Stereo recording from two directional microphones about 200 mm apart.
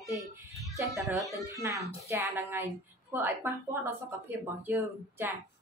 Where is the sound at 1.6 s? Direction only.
15° right (ahead or behind).